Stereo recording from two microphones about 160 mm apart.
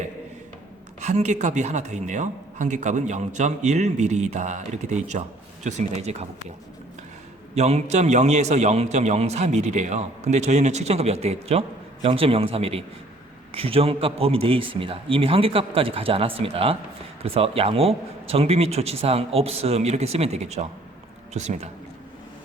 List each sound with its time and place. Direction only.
1.0 s a man's voice: 45° right (ahead or behind)
7.5 s a man's voice: 40° right (ahead or behind)